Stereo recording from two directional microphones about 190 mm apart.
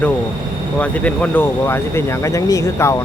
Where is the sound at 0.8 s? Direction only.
5° left (ahead or behind).